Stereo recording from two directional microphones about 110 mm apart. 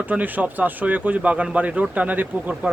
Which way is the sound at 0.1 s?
15° right (ahead or behind).